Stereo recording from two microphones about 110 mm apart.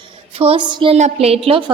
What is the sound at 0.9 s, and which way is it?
Speech, 70° right (ahead or behind).